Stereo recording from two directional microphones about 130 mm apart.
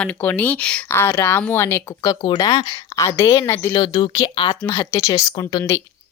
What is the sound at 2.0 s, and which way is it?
A woman's voice, 30° left (ahead or behind).